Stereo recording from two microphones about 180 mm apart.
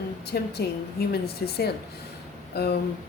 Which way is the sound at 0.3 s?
60° left (ahead or behind).